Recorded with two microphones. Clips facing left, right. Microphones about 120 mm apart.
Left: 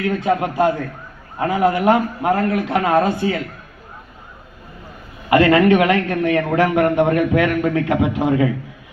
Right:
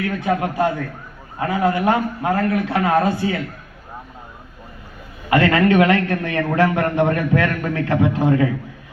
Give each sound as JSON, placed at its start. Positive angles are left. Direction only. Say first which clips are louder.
{"t": 0.0, "sound": "a man's voice", "louder": "left 2 dB", "side_deg": 25}
{"t": 5.3, "sound": "a man's voice", "louder": "left 3 dB", "side_deg": 20}